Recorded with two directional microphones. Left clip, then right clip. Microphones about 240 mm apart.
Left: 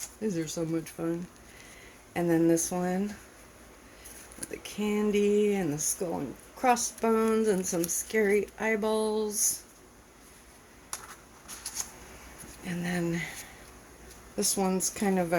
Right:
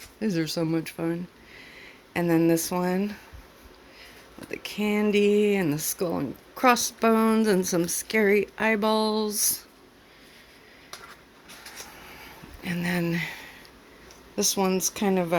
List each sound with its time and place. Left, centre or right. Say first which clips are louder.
0.2 s speech: right 5 dB; right
2.1 s speech: right 3 dB; right
4.4 s speech: right 5 dB; right
12.6 s speech: right 4 dB; right
14.3 s speech: right 5 dB; centre